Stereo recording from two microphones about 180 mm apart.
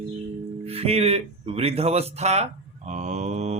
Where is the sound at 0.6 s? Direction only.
35° right (ahead or behind).